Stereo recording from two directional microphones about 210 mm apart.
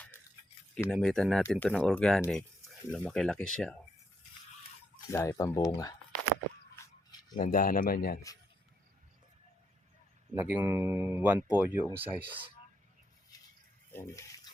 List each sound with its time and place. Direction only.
0.9 s speech: centre (ahead or behind)
5.1 s speech: 15° left (ahead or behind)
7.3 s speech: 40° left (ahead or behind)
10.3 s speech: 5° right (ahead or behind)
13.9 s a sound: 15° left (ahead or behind)